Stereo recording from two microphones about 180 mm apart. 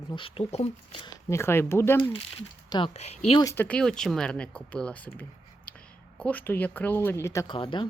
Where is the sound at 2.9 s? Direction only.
40° left (ahead or behind).